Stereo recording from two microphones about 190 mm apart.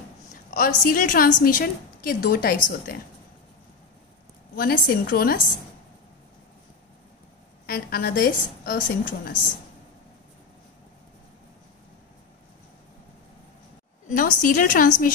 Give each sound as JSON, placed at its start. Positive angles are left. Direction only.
{"t": 0.5, "sound": "a woman's voice", "side_deg": 45}
{"t": 4.6, "sound": "a woman's voice", "side_deg": 50}
{"t": 7.6, "sound": "a woman's voice", "side_deg": 55}
{"t": 14.0, "sound": "a woman's voice", "side_deg": 45}